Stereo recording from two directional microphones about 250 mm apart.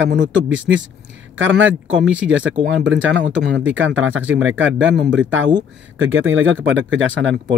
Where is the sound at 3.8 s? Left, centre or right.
Right.